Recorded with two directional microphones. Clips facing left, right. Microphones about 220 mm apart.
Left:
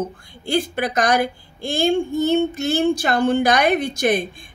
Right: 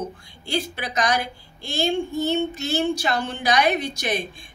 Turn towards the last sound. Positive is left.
turn(degrees=50)  # may be behind; listen again after turning